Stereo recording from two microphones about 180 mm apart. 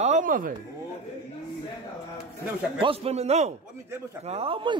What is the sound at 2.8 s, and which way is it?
Speech, 35° right (ahead or behind).